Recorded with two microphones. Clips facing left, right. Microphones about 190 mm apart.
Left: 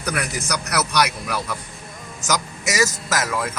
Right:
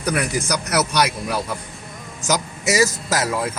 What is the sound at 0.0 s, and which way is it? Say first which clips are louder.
Speech: right 4 dB; 30° right (ahead or behind).